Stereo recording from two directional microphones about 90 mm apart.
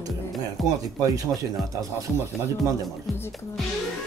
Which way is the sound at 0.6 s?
Centre (ahead or behind).